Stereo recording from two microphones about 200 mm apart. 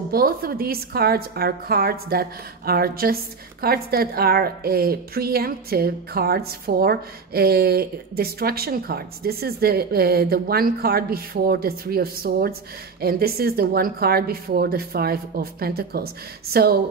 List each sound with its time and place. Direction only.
0.1 s a woman's voice: 45° right (ahead or behind)